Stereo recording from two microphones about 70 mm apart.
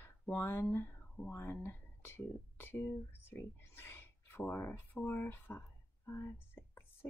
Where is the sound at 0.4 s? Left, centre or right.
Left.